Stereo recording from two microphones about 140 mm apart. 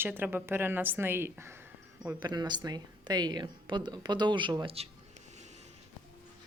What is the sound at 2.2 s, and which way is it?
A woman's voice, 30° right (ahead or behind).